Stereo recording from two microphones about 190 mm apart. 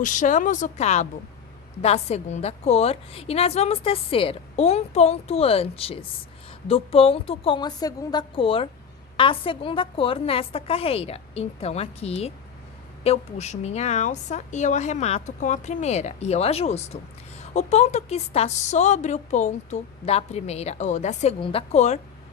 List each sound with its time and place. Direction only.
0.0 s a woman's voice: 40° left (ahead or behind)